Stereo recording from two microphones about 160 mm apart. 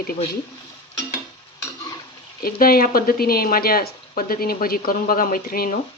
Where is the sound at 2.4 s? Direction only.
65° left (ahead or behind).